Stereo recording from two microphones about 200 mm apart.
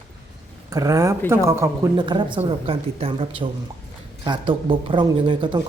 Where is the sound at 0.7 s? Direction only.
15° right (ahead or behind).